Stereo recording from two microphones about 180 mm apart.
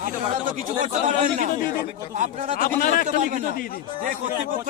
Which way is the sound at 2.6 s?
50° left (ahead or behind).